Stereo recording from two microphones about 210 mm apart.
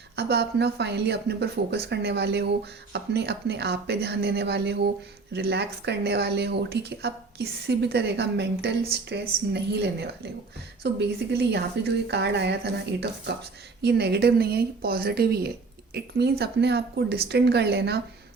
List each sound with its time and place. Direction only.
0.2 s speech: 50° right (ahead or behind)